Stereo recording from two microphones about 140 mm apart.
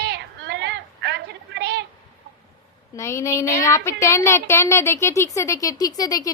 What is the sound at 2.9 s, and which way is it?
A woman's voice, 20° left (ahead or behind).